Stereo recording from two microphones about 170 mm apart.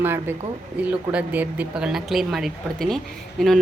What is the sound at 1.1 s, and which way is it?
A woman's voice, 5° right (ahead or behind).